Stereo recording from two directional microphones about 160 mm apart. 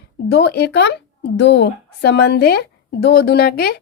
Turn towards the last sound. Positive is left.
turn(degrees=75)  # may be behind; listen again after turning